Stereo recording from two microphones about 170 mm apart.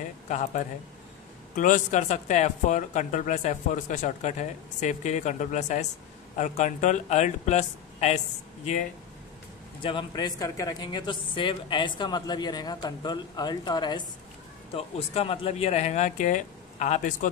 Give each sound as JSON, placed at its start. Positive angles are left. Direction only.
{"t": 0.3, "sound": "speech", "side_deg": 45}
{"t": 9.8, "sound": "speech", "side_deg": 25}